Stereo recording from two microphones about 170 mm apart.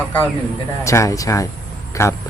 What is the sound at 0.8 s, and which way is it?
A man's voice, 20° left (ahead or behind).